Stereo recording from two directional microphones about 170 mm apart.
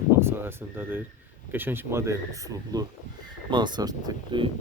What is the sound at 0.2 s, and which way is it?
Speech, 15° right (ahead or behind).